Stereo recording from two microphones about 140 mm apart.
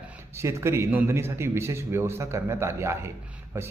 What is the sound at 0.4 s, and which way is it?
A man's voice, 20° right (ahead or behind).